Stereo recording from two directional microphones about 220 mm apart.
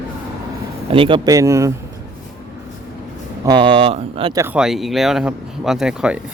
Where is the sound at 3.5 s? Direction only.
20° right (ahead or behind).